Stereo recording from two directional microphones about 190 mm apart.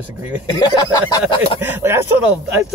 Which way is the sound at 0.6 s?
20° left (ahead or behind).